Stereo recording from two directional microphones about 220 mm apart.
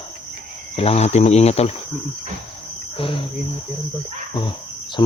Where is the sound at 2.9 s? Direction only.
25° left (ahead or behind).